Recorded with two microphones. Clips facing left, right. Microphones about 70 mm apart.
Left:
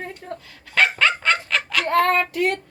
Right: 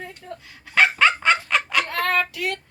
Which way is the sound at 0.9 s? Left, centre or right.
Centre.